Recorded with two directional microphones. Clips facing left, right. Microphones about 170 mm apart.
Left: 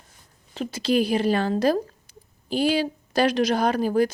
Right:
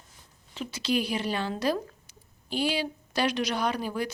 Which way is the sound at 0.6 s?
45° left (ahead or behind).